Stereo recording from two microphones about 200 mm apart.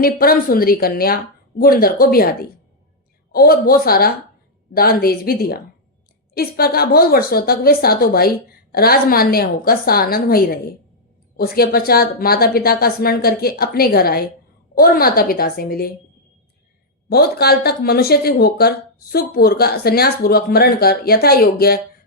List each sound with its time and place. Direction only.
0.0 s speech: 45° left (ahead or behind)
3.3 s speech: 45° left (ahead or behind)
17.1 s speech: 50° left (ahead or behind)